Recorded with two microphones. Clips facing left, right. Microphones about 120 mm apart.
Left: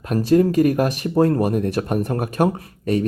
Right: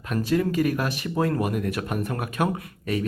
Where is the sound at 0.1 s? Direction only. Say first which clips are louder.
Left 7 dB; 35° left (ahead or behind).